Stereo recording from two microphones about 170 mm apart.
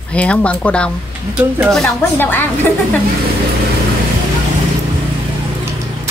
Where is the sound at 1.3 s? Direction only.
5° right (ahead or behind).